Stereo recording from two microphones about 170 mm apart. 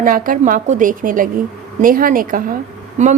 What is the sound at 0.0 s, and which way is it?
A woman's voice, 55° right (ahead or behind).